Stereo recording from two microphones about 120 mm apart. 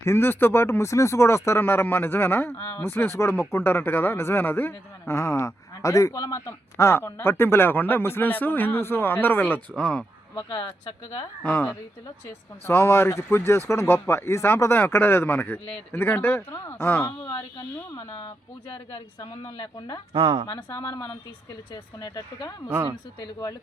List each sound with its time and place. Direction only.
0.0 s speech: 20° left (ahead or behind)
2.6 s speech: 35° left (ahead or behind)
2.8 s speech: 20° left (ahead or behind)
9.7 s speech: 5° left (ahead or behind)
10.3 s speech: 40° left (ahead or behind)
11.4 s a woman's voice: 15° left (ahead or behind)
19.2 s speech: 35° left (ahead or behind)